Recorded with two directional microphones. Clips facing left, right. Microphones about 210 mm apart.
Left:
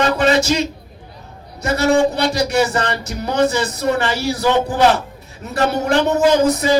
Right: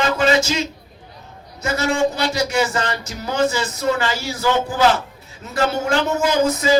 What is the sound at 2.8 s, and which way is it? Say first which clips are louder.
Speech: left 3 dB; 65° left (ahead or behind).